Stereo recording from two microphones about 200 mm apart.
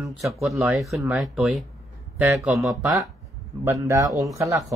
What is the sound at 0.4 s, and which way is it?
Speech, centre (ahead or behind).